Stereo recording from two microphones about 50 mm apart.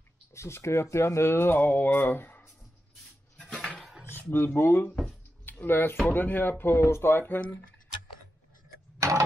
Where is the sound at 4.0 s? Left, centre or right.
Left.